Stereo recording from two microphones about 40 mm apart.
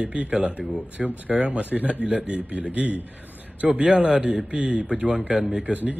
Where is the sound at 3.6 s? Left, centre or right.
Right.